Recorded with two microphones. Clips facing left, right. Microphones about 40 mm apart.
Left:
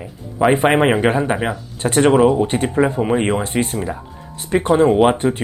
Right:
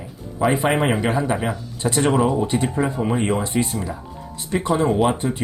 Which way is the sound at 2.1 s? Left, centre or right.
Left.